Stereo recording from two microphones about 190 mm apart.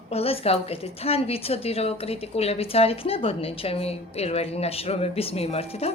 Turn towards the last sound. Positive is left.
turn(degrees=30)  # may be behind; listen again after turning